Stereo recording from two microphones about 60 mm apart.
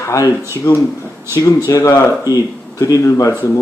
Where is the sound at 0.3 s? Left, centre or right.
Right.